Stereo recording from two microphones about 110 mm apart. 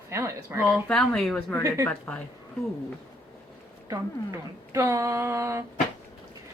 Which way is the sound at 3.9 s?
30° right (ahead or behind).